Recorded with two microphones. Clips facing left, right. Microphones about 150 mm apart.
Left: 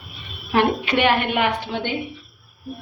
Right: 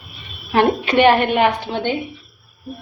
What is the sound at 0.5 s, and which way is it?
Speech, 35° right (ahead or behind).